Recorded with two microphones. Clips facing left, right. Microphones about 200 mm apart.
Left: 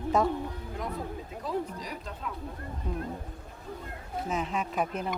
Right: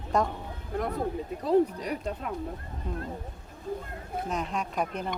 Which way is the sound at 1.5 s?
60° right (ahead or behind).